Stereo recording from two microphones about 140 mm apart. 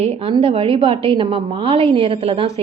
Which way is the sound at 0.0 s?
45° right (ahead or behind).